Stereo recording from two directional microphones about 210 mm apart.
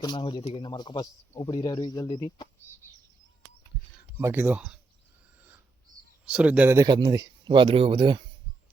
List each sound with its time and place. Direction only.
0.0 s speech: 20° left (ahead or behind)
4.2 s speech: 10° right (ahead or behind)
6.2 s speech: 5° right (ahead or behind); by 8.2 s 25° right (ahead or behind)